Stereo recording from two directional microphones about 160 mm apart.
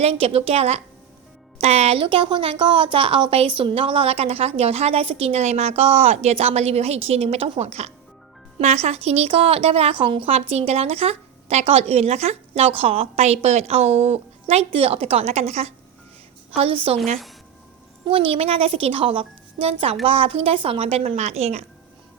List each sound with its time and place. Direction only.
0.0 s a woman's voice: 40° right (ahead or behind)
18.0 s a woman's voice: 35° right (ahead or behind)